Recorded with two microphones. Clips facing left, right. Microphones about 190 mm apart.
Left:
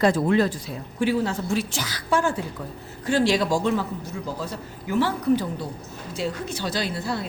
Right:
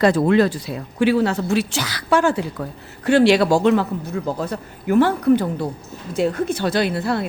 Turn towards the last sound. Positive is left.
turn(degrees=-60)  # may be behind; listen again after turning